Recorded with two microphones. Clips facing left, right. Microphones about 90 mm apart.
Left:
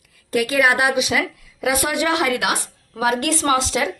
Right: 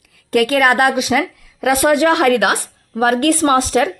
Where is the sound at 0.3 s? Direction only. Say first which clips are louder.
Right 4 dB; 55° right (ahead or behind).